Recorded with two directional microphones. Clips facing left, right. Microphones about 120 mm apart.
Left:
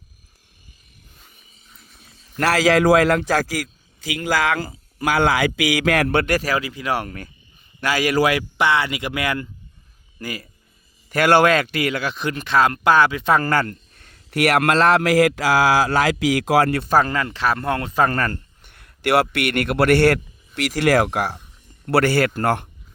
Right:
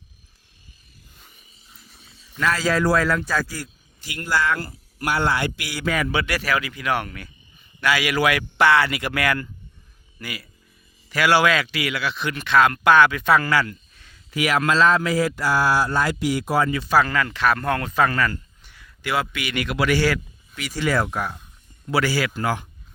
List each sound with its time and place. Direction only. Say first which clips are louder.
2.4 s a man's voice: left 5 dB; 85° left; by 8.4 s 30° left (ahead or behind)
8.5 s speech: right 2 dB; 20° left (ahead or behind)
10.2 s speech: left 4 dB; 40° left (ahead or behind)
13.3 s a man's voice: left 1 dB; 45° left (ahead or behind); by 16.9 s 60° left (ahead or behind)
16.9 s speech: left 1 dB; 35° left (ahead or behind)
18.2 s a man's voice: even; 50° left (ahead or behind)
20.6 s a man's voice: left 6 dB; 70° left (ahead or behind)
21.8 s a man's voice: left 5 dB; 60° left (ahead or behind)